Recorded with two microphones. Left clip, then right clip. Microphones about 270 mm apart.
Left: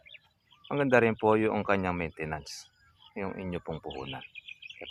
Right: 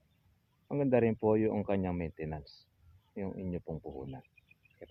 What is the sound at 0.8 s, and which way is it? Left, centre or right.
Speech, centre.